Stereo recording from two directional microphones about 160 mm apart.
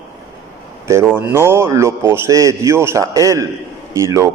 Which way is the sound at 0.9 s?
15° right (ahead or behind).